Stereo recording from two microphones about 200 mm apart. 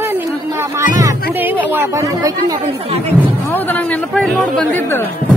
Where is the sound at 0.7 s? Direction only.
15° right (ahead or behind).